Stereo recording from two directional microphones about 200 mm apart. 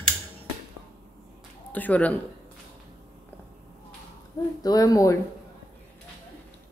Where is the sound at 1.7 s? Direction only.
10° left (ahead or behind).